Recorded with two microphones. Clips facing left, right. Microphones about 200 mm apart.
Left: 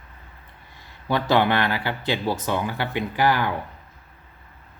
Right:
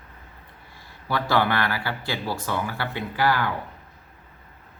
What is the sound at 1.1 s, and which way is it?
Speech, 20° left (ahead or behind).